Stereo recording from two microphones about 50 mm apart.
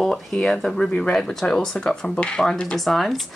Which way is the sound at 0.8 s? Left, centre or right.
Left.